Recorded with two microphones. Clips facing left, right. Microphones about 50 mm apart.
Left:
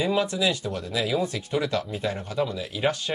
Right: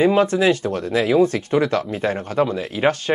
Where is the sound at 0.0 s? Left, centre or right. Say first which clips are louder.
Right 8 dB; right.